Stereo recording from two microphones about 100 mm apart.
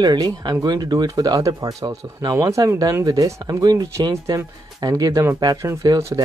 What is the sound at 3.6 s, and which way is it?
Speech, 45° right (ahead or behind).